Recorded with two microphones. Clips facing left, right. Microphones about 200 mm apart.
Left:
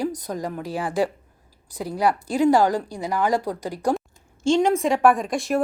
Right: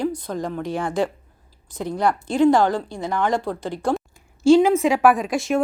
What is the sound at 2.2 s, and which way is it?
Speech, 35° left (ahead or behind).